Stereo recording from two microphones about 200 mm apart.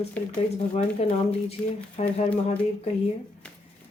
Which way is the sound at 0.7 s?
30° left (ahead or behind).